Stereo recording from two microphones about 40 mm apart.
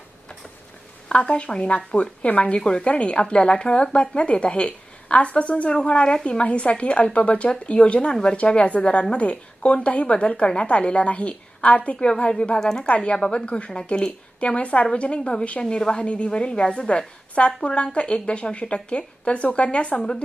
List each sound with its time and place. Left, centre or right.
1.0 s speech: left
2.6 s a woman's voice: left
12.9 s speech: left